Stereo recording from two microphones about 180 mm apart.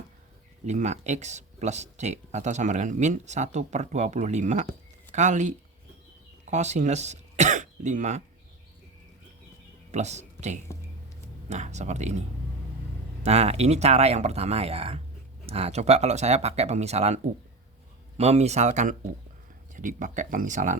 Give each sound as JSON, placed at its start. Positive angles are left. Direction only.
{"t": 0.6, "sound": "speech", "side_deg": -40}
{"t": 9.9, "sound": "speech", "side_deg": -40}
{"t": 13.2, "sound": "speech", "side_deg": -35}
{"t": 18.2, "sound": "speech", "side_deg": -35}